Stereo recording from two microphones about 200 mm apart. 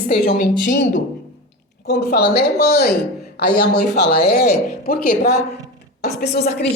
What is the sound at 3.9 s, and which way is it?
A woman's voice, 55° left (ahead or behind).